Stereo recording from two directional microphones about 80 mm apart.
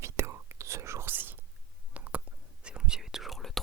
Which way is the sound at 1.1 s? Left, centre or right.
Right.